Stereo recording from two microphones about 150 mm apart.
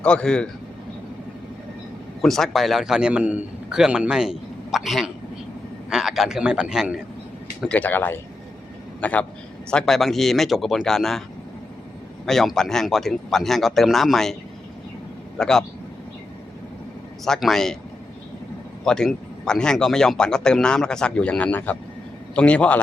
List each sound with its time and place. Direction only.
0.0 s speech: 5° left (ahead or behind)
2.2 s a man's voice: centre (ahead or behind)
7.7 s a man's voice: 10° left (ahead or behind)
12.2 s a man's voice: centre (ahead or behind)
15.4 s a man's voice: 5° left (ahead or behind)
17.2 s a man's voice: 5° left (ahead or behind)
18.9 s a man's voice: 5° left (ahead or behind)